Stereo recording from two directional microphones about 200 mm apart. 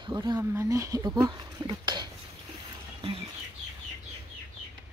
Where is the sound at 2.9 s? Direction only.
25° right (ahead or behind).